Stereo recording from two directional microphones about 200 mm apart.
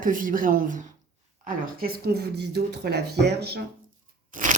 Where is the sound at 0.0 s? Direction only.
40° right (ahead or behind).